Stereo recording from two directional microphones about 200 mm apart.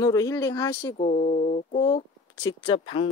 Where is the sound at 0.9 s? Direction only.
35° left (ahead or behind).